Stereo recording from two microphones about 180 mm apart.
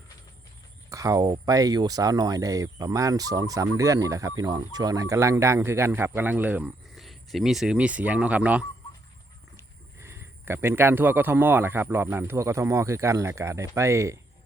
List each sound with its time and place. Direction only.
0.9 s speech: 20° right (ahead or behind)